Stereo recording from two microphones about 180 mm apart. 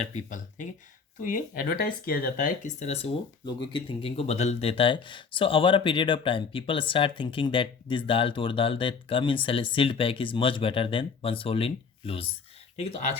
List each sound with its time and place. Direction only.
0.1 s speech: 45° left (ahead or behind)